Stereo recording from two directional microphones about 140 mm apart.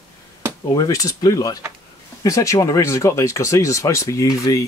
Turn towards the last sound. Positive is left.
turn(degrees=25)  # may be behind; listen again after turning